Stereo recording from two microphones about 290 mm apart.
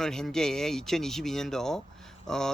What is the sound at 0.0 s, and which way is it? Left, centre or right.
A man's voice, centre.